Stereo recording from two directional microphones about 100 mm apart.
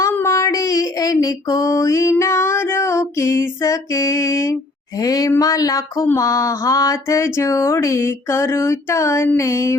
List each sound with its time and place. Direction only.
0.1 s female singing: 25° left (ahead or behind)
4.9 s speech: 40° left (ahead or behind)
6.1 s a sound: 35° left (ahead or behind)